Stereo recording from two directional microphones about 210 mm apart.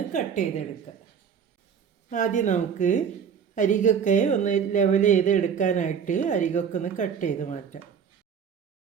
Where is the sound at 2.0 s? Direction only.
35° left (ahead or behind).